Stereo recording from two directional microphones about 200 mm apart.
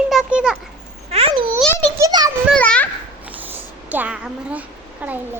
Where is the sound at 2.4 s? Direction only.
5° left (ahead or behind).